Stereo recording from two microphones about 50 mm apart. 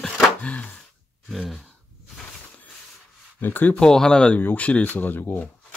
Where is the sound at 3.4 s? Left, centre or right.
Left.